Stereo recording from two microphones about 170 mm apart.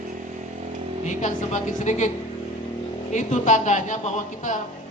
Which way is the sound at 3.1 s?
45° left (ahead or behind).